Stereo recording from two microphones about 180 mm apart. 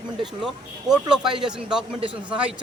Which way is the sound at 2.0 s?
30° right (ahead or behind).